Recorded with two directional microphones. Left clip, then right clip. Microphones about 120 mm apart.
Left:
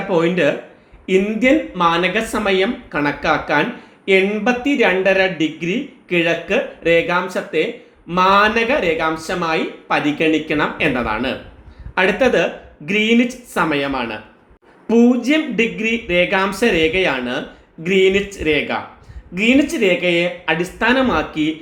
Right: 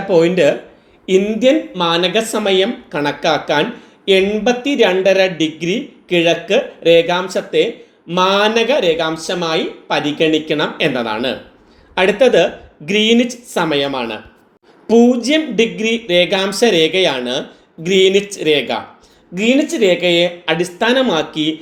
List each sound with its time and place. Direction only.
0.1 s speech: 30° right (ahead or behind)